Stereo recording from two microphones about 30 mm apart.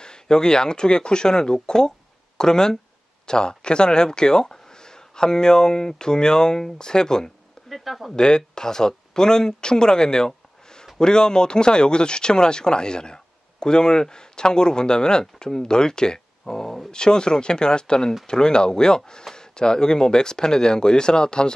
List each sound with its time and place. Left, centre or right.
0.0 s speech: left
7.7 s speech: centre
8.2 s speech: left
16.9 s speech: left